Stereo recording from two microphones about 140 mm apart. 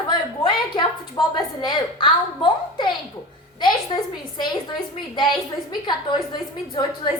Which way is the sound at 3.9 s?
45° left (ahead or behind).